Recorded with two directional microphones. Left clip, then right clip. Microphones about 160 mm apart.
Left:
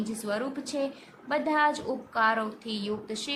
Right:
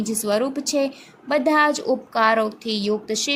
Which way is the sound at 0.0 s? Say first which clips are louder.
Right 10 dB; 45° right (ahead or behind).